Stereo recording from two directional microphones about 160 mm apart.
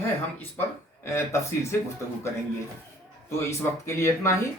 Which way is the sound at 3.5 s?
15° left (ahead or behind).